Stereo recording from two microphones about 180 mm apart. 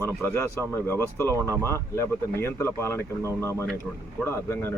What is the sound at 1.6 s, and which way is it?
Speech, 15° left (ahead or behind).